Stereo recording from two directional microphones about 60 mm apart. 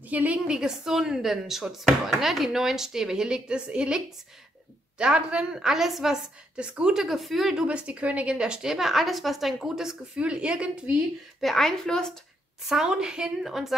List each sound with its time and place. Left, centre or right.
0.1 s a woman's voice: right
0.5 s speech: centre
7.6 s speech: centre
11.4 s a woman's voice: centre
12.6 s a woman's voice: centre